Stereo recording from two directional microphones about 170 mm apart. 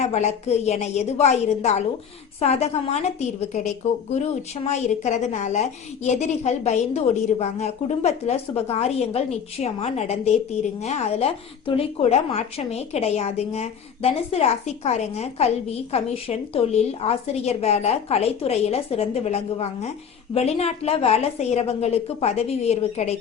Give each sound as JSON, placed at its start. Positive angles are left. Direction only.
{"t": 0.0, "sound": "speech", "side_deg": 40}
{"t": 4.1, "sound": "speech", "side_deg": 40}